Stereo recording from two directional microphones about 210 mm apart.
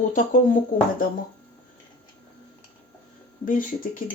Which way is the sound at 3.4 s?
40° left (ahead or behind).